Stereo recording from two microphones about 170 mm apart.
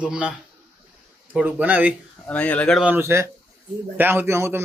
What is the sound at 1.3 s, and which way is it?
Speech, 10° right (ahead or behind).